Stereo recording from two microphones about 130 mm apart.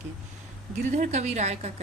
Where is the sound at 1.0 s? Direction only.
60° right (ahead or behind).